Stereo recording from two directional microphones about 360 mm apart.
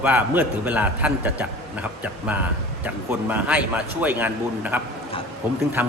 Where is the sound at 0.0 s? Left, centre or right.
Centre.